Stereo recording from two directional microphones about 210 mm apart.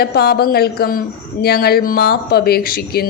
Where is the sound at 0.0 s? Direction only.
50° left (ahead or behind).